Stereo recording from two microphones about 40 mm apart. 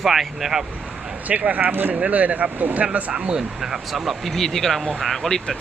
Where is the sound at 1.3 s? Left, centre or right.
Right.